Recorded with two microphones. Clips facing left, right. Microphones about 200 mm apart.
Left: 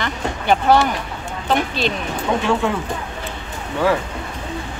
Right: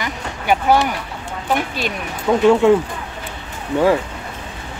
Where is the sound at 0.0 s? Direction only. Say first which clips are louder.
Left 2 dB; 10° right (ahead or behind).